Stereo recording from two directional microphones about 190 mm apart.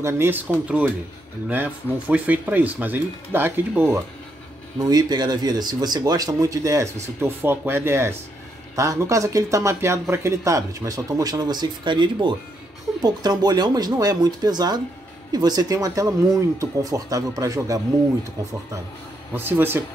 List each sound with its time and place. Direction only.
0.0 s speech: 10° right (ahead or behind)
1.5 s speech: 10° right (ahead or behind)
19.3 s speech: 10° right (ahead or behind)